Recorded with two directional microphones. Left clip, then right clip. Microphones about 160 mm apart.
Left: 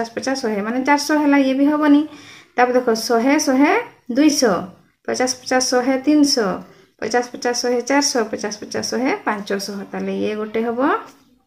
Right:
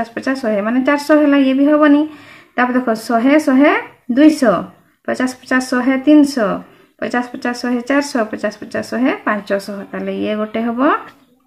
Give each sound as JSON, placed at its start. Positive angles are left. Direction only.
{"t": 0.0, "sound": "speech", "side_deg": -50}